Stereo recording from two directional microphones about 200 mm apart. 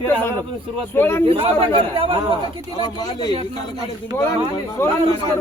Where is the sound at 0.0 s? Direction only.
10° left (ahead or behind).